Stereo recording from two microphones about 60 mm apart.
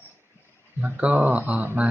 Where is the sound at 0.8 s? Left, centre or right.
Right.